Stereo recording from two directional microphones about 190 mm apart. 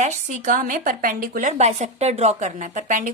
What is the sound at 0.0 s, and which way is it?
A woman's voice, 40° right (ahead or behind).